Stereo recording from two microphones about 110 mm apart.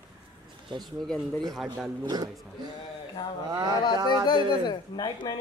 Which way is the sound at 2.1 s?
35° right (ahead or behind).